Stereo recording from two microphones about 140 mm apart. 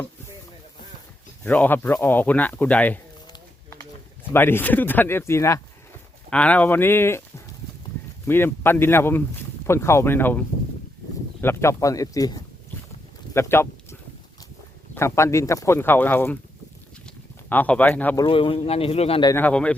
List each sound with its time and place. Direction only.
1.5 s speech: 10° left (ahead or behind)
4.3 s speech: 15° left (ahead or behind)
6.3 s speech: 10° left (ahead or behind)
8.3 s speech: 15° left (ahead or behind)
14.9 s speech: 20° left (ahead or behind)
17.5 s speech: 10° left (ahead or behind)
18.3 s speech: 40° left (ahead or behind)
19.4 s speech: 10° left (ahead or behind)